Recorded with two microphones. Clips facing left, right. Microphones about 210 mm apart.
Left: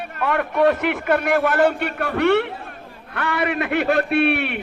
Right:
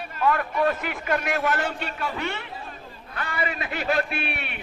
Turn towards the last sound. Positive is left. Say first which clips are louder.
# left 13 dB
turn(degrees=65)  # may be behind; listen again after turning